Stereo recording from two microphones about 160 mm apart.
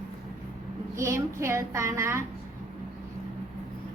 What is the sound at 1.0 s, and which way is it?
A woman's voice, 15° right (ahead or behind).